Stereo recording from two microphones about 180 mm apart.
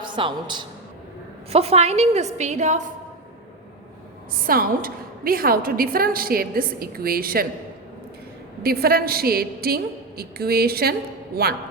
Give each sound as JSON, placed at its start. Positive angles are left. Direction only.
{"t": 0.0, "sound": "a woman's voice", "side_deg": -25}
{"t": 4.4, "sound": "a woman's voice", "side_deg": -50}
{"t": 8.6, "sound": "a woman's voice", "side_deg": -55}